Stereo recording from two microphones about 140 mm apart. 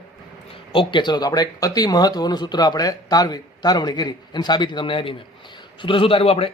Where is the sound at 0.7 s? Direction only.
35° left (ahead or behind).